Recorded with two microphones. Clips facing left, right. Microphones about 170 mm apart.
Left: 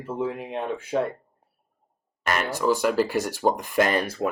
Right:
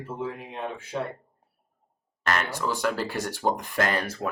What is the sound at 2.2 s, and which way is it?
Speech, 10° left (ahead or behind).